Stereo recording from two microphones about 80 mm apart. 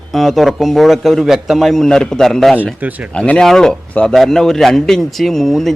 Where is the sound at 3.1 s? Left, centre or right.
Centre.